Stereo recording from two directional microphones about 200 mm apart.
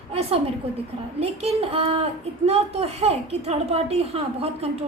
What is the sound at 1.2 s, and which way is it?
A woman's voice, 30° right (ahead or behind).